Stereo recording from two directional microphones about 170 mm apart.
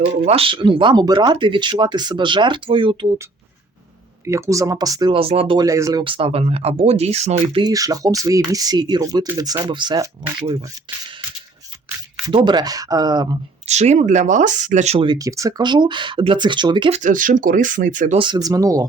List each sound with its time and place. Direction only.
0.3 s speech: 35° right (ahead or behind)
4.3 s speech: 15° right (ahead or behind); by 5.6 s 30° right (ahead or behind)
5.6 s speech: 20° right (ahead or behind); by 7.6 s 40° right (ahead or behind)
7.6 s speech: 20° right (ahead or behind)
12.3 s speech: 25° right (ahead or behind)
13.7 s speech: 40° right (ahead or behind)
16.9 s speech: 50° right (ahead or behind)
18.2 s speech: 25° right (ahead or behind)